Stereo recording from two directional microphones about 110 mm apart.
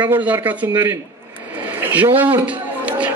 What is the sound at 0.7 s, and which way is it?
Speech, 30° right (ahead or behind).